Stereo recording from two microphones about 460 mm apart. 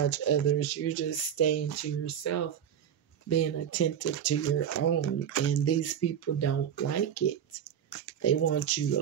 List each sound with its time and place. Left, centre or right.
0.0 s speech: left